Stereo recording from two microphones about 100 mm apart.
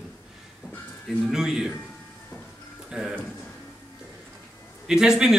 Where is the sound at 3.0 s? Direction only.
10° right (ahead or behind).